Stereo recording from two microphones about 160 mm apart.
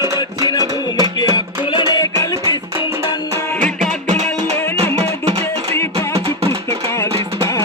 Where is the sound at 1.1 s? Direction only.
30° left (ahead or behind).